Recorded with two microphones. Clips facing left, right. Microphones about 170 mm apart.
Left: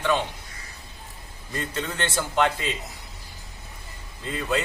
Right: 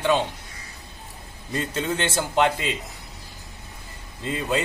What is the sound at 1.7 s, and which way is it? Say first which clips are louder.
Speech: right 3 dB; 20° right (ahead or behind).